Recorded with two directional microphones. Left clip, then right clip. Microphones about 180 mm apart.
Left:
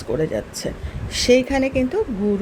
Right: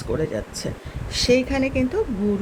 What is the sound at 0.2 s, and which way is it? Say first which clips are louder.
A woman's voice: left 3 dB; 10° left (ahead or behind).